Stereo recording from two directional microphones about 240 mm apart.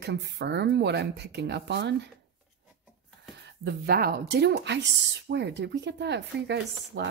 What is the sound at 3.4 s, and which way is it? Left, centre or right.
A woman's voice, right.